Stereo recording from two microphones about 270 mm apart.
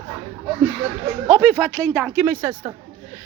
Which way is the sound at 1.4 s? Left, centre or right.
Centre.